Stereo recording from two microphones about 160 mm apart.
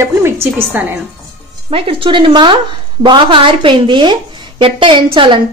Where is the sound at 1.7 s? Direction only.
35° right (ahead or behind).